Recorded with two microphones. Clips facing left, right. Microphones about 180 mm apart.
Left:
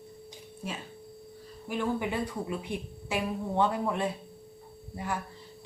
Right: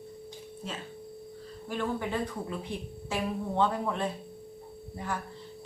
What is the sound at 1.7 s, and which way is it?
Speech, 10° left (ahead or behind).